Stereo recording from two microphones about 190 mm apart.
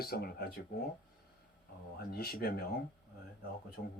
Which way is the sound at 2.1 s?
55° left (ahead or behind).